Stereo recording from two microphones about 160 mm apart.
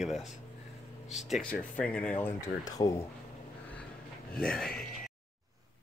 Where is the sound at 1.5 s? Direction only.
5° left (ahead or behind); by 3.0 s 20° left (ahead or behind).